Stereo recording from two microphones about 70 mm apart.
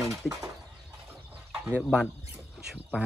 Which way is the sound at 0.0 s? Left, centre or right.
Centre.